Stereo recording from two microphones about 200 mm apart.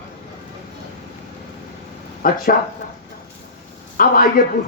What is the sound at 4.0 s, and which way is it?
Speech, 45° left (ahead or behind).